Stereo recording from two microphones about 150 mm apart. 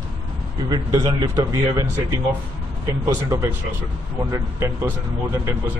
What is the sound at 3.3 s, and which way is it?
Speech, 15° right (ahead or behind).